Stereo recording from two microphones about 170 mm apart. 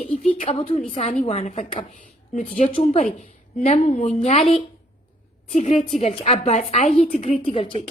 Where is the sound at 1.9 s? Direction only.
50° left (ahead or behind).